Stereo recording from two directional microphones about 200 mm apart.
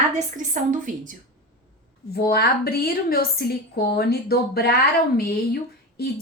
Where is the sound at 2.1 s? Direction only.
50° left (ahead or behind).